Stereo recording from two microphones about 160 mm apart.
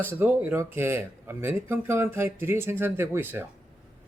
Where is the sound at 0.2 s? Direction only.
15° right (ahead or behind).